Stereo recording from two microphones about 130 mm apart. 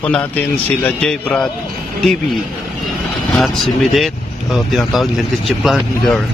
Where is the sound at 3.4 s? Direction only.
Centre (ahead or behind).